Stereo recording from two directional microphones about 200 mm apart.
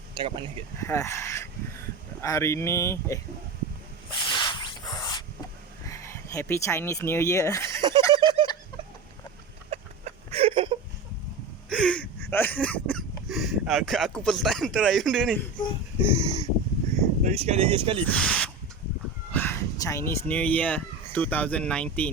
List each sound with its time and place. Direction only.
0.2 s speech: 25° right (ahead or behind)
0.8 s speech: 15° left (ahead or behind)
4.1 s a sound: 25° left (ahead or behind)
5.8 s speech: 15° left (ahead or behind)
7.8 s a sound: 20° right (ahead or behind)
9.6 s a sound: 35° right (ahead or behind)
11.7 s speech: 5° left (ahead or behind)
16.0 s speech: 15° right (ahead or behind)
17.2 s speech: 30° right (ahead or behind)
18.0 s speech: 5° left (ahead or behind)